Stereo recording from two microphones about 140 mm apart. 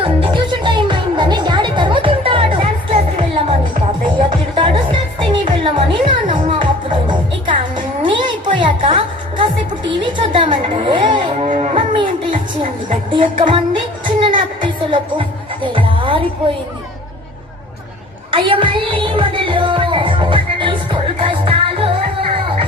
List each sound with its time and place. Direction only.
0.0 s music: 35° right (ahead or behind)
8.5 s a woman's voice: 35° right (ahead or behind)
11.4 s music: 55° right (ahead or behind)
11.9 s music: 35° right (ahead or behind)
18.3 s music: 40° right (ahead or behind)